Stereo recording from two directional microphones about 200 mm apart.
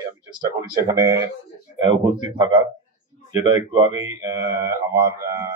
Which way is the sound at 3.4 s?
20° right (ahead or behind).